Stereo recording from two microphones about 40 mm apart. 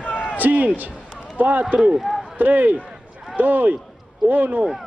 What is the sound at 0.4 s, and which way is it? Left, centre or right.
A man's voice, right.